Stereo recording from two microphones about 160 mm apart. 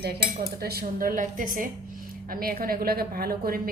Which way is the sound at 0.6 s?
75° right (ahead or behind).